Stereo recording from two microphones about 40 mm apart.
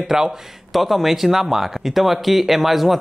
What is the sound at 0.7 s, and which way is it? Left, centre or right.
Speech, centre.